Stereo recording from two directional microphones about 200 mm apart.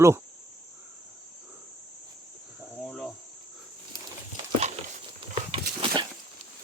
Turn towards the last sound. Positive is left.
turn(degrees=-25)  # may be behind; listen again after turning